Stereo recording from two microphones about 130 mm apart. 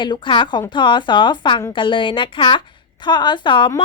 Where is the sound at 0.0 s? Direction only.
35° left (ahead or behind).